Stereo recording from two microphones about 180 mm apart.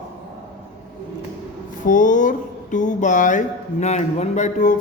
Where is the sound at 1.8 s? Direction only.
45° left (ahead or behind).